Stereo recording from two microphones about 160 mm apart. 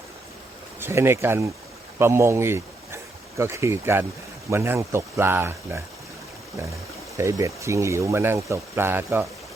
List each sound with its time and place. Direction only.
0.8 s speech: 15° right (ahead or behind)
7.2 s speech: 20° right (ahead or behind)